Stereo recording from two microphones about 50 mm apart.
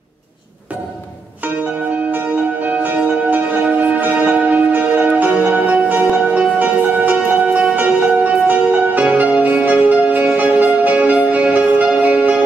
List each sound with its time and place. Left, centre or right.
2.0 s church bell: right
5.3 s music: right